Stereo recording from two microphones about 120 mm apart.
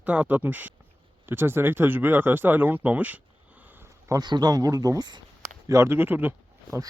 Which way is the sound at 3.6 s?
15° right (ahead or behind).